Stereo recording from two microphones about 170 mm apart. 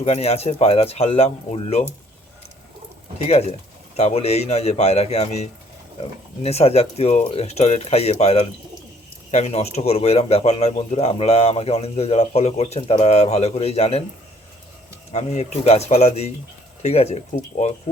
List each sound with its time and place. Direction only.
0.0 s speech: 40° left (ahead or behind)
3.2 s speech: 40° left (ahead or behind)
15.1 s speech: 40° left (ahead or behind)